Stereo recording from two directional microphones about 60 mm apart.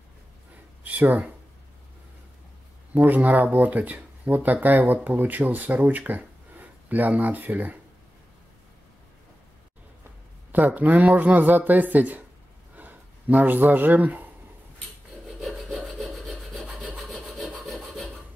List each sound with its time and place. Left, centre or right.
0.8 s speech: right
2.9 s speech: right
10.5 s speech: right
12.7 s a sound: right
15.2 s wood: centre
16.8 s wood: centre
17.6 s wood: centre